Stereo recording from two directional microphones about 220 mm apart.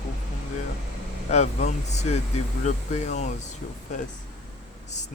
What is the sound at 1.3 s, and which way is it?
Speech, 30° left (ahead or behind).